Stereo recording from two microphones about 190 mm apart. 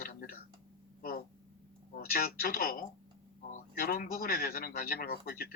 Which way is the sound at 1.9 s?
50° left (ahead or behind).